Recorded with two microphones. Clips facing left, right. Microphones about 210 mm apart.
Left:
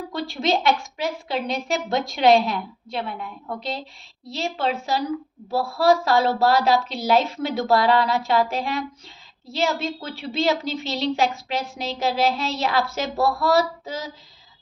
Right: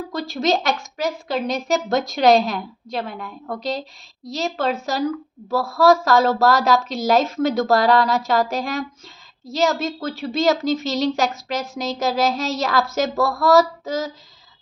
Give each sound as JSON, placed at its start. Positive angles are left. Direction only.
{"t": 0.1, "sound": "a woman's voice", "side_deg": -40}